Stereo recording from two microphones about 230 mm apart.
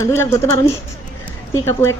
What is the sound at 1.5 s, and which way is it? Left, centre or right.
Speech, centre.